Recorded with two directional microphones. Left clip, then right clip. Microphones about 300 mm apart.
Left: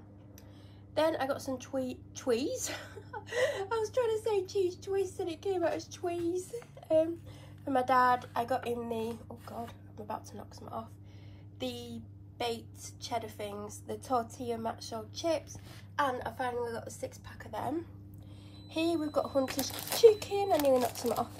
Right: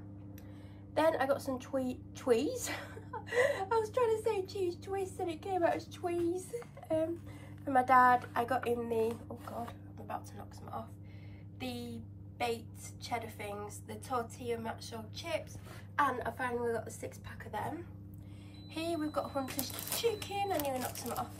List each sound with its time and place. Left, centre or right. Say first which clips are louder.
0.9 s a woman's voice: even; centre
10.0 s a woman's voice: left 2 dB; centre
18.7 s a woman's voice: left 5 dB; centre
19.4 s speech: left 6 dB; left
20.2 s a woman's voice: left 4 dB; centre